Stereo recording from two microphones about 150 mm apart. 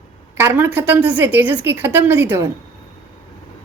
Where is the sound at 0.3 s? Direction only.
15° right (ahead or behind).